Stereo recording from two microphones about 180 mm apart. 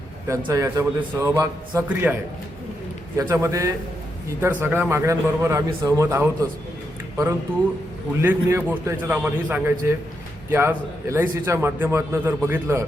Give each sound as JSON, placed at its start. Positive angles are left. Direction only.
{"t": 0.3, "sound": "a man's voice", "side_deg": -20}
{"t": 3.2, "sound": "a man's voice", "side_deg": -15}
{"t": 8.2, "sound": "a man's voice", "side_deg": -10}